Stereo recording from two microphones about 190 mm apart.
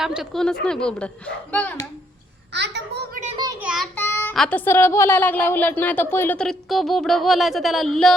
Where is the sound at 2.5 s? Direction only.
65° right (ahead or behind).